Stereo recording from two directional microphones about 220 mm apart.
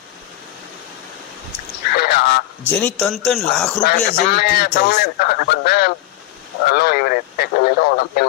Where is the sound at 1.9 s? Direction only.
45° left (ahead or behind).